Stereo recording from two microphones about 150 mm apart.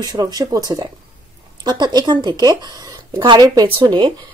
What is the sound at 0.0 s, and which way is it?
Speech, 25° right (ahead or behind).